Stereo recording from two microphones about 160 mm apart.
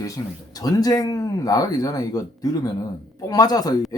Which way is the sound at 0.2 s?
20° left (ahead or behind).